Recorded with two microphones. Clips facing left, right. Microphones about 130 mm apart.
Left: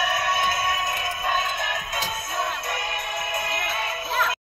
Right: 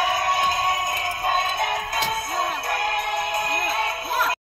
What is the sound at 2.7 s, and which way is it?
Music, 50° right (ahead or behind).